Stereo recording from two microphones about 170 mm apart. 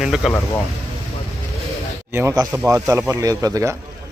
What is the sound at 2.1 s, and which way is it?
Speech, 15° right (ahead or behind).